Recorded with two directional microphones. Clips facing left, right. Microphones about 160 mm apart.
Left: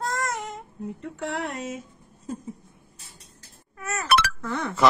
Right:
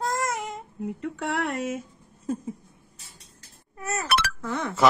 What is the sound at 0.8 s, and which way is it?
Speech, 75° right (ahead or behind).